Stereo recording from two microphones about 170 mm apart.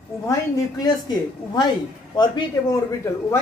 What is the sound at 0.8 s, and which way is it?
A woman's voice, 25° left (ahead or behind).